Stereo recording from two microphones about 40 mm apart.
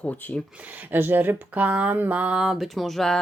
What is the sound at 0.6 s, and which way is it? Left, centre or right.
Speech, right.